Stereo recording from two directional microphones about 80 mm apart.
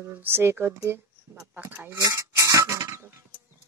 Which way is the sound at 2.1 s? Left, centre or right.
Right.